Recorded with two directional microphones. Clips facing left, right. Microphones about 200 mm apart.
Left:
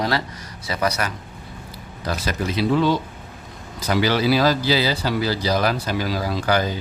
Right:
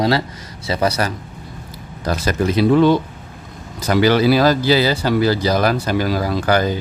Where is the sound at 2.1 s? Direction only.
50° right (ahead or behind).